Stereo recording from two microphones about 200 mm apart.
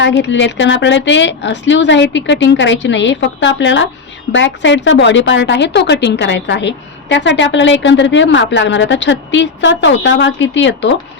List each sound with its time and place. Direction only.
0.0 s a woman's voice: 65° left (ahead or behind)